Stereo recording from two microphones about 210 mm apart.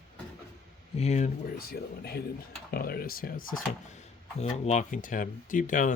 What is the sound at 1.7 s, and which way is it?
Speech, 50° left (ahead or behind).